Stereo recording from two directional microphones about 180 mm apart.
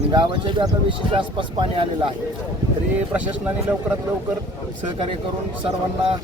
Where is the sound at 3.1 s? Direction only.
5° right (ahead or behind).